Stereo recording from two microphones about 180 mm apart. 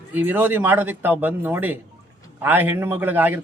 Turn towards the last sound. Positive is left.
turn(degrees=-10)  # may be behind; listen again after turning